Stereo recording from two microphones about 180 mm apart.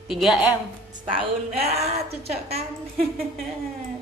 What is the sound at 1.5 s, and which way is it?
A woman's voice, 35° right (ahead or behind).